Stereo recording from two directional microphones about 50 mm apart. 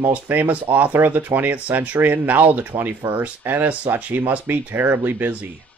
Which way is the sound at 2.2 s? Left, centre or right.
Right.